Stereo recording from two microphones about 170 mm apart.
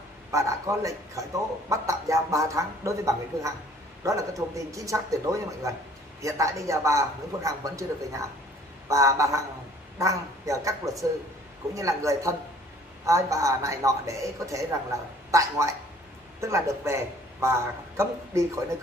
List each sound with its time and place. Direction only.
0.3 s a man's voice: 20° right (ahead or behind)